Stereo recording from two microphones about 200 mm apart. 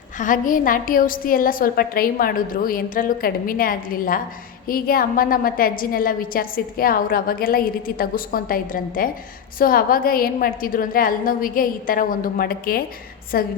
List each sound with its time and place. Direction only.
0.2 s a woman's voice: 40° left (ahead or behind)